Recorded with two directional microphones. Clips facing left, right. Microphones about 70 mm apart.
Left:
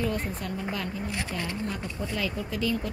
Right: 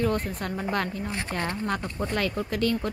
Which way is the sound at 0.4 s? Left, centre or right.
Right.